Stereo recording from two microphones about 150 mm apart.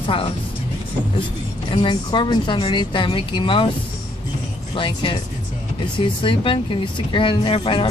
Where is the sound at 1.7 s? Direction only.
35° left (ahead or behind).